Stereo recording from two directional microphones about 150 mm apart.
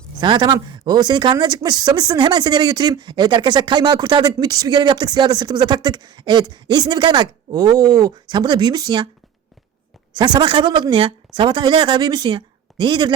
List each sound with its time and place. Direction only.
0.2 s speech: 30° right (ahead or behind)
10.2 s a woman's voice: 30° right (ahead or behind)